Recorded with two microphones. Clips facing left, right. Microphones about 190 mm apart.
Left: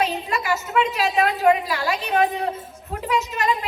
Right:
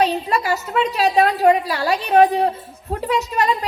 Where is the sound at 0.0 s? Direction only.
35° right (ahead or behind).